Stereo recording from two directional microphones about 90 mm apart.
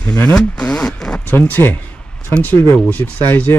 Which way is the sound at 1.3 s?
20° left (ahead or behind).